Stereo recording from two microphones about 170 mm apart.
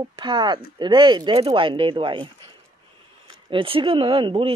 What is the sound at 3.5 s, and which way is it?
Speech, 30° right (ahead or behind).